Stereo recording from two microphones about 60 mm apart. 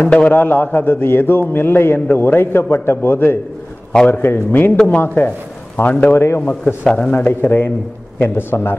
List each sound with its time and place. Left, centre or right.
0.0 s a man's voice: left
6.1 s a man's voice: left
6.6 s a man's voice: centre
7.1 s a man's voice: left